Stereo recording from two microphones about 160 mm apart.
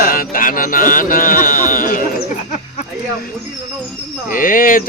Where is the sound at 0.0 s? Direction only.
60° left (ahead or behind).